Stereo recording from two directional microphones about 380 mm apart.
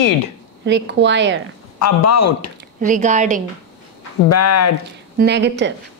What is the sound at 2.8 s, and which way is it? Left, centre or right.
Speech, centre.